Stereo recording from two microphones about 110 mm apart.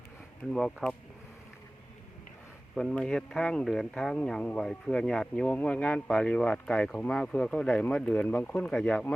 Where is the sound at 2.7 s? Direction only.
5° left (ahead or behind).